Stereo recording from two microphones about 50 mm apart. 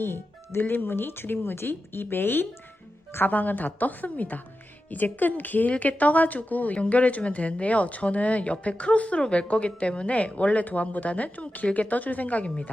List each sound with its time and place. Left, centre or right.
0.0 s speech: left
3.2 s a woman's voice: left